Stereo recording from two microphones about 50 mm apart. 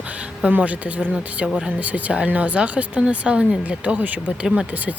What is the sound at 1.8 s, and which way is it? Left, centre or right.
Speech, right.